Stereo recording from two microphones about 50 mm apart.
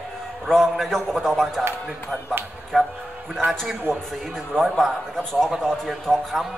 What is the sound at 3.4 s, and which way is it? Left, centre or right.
Speech, right.